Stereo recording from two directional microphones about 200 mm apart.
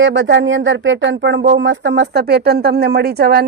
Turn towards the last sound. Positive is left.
turn(degrees=-50)  # may be behind; listen again after turning